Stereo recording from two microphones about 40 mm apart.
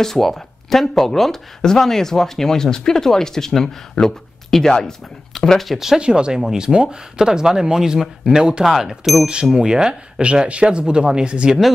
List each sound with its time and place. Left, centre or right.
0.0 s speech: centre
5.3 s speech: centre
5.9 s speech: right; by 9.2 s centre
9.2 s speech: right